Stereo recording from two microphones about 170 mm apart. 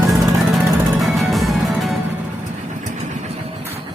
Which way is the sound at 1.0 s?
Centre (ahead or behind).